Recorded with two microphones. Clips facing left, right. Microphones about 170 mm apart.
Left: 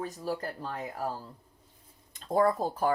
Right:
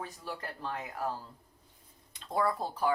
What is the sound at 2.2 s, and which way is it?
Speech, 45° left (ahead or behind).